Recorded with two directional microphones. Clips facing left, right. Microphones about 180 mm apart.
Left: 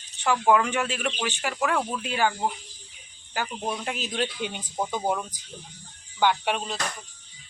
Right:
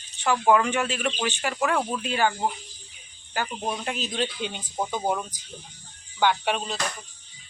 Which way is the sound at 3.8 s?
10° left (ahead or behind).